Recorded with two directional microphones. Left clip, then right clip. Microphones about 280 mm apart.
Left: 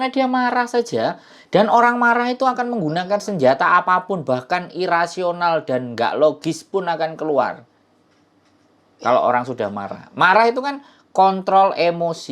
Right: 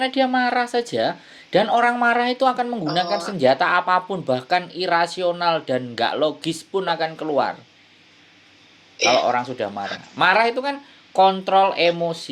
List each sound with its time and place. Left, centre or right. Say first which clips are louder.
0.0 s speech: left 1 dB; left
9.2 s speech: left 3 dB; centre